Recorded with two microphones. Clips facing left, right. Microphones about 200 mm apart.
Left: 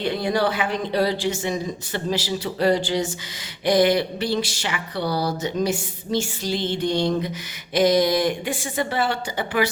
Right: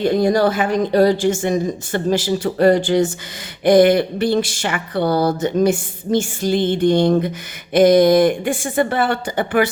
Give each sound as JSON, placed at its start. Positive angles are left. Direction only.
{"t": 0.0, "sound": "speech", "side_deg": -45}